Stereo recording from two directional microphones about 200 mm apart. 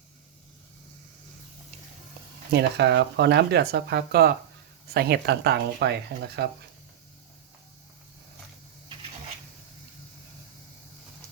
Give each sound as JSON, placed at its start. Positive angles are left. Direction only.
{"t": 2.5, "sound": "speech", "side_deg": -55}